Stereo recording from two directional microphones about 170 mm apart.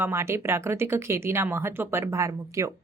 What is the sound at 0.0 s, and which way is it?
A woman's voice, 15° right (ahead or behind).